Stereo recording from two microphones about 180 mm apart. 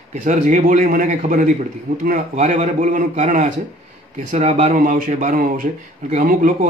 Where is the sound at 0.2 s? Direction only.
45° right (ahead or behind).